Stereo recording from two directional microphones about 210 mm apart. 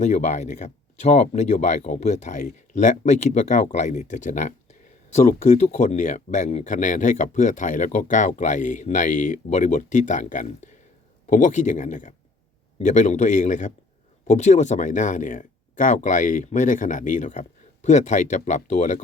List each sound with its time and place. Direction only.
0.0 s speech: 35° left (ahead or behind)